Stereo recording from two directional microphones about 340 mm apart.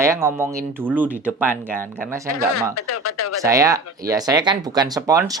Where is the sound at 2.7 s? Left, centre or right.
Left.